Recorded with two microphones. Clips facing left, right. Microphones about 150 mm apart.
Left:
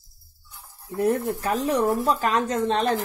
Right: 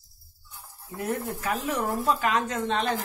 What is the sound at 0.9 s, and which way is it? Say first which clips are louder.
Speech: left 8 dB; 35° left (ahead or behind).